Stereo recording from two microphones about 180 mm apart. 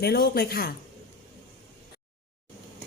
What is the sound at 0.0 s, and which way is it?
Speech, 60° left (ahead or behind).